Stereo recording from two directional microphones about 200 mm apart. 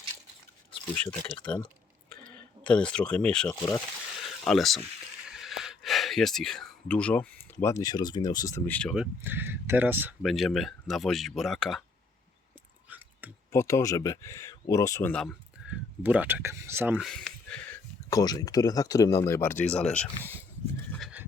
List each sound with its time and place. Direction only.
0.9 s speech: 5° left (ahead or behind)
13.5 s speech: 15° left (ahead or behind)
15.6 s a sound: 5° right (ahead or behind)
16.0 s speech: 10° right (ahead or behind)
18.1 s speech: 20° left (ahead or behind)
21.0 s horse: 5° right (ahead or behind)